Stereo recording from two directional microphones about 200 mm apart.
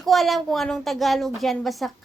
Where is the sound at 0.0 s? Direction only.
Centre (ahead or behind).